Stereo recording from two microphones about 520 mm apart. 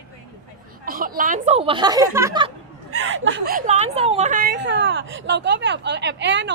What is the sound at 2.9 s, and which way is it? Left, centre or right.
A woman's voice, right.